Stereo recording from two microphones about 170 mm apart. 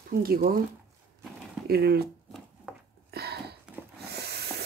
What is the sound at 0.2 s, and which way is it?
Speech, 60° right (ahead or behind).